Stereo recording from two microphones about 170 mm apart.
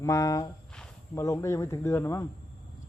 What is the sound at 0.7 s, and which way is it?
Snake, 5° left (ahead or behind).